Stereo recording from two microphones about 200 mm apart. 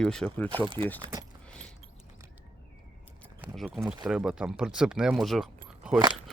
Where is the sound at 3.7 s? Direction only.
10° right (ahead or behind).